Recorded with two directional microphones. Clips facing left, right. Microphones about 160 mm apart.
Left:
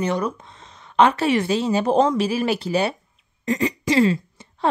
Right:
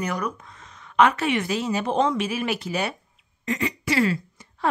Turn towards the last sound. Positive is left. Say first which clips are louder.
# left 1 dB
turn(degrees=25)  # may be behind; listen again after turning